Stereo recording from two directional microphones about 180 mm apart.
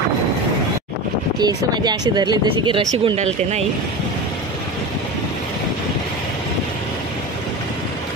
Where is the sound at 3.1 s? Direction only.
40° right (ahead or behind).